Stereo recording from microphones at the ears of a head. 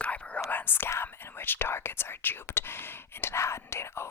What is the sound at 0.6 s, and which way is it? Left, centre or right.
Speech, left.